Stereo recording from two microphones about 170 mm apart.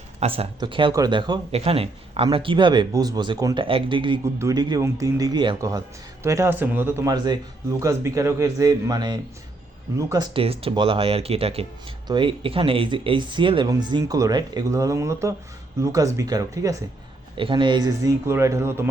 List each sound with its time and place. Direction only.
0.2 s speech: 35° right (ahead or behind)
1.5 s speech: 35° right (ahead or behind); by 10.2 s 20° right (ahead or behind)
10.3 s speech: 35° right (ahead or behind); by 18.9 s 15° right (ahead or behind)